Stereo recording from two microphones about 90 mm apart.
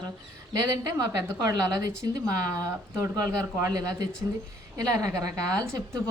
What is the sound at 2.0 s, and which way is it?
A woman's voice, 40° right (ahead or behind).